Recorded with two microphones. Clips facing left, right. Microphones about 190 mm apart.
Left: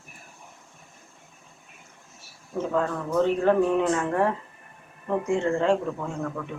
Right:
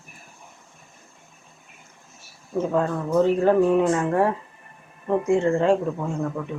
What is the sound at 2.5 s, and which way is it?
Speech, 15° right (ahead or behind).